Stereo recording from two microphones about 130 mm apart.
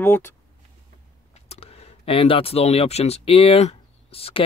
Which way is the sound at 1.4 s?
50° left (ahead or behind).